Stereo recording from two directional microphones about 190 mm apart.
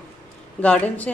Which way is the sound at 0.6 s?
5° left (ahead or behind).